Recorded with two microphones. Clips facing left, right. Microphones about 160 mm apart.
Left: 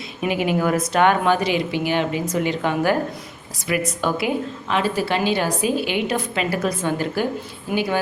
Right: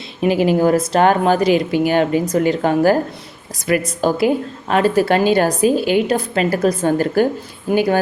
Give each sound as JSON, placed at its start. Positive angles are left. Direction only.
{"t": 0.2, "sound": "a woman's voice", "side_deg": -35}
{"t": 4.7, "sound": "a woman's voice", "side_deg": -45}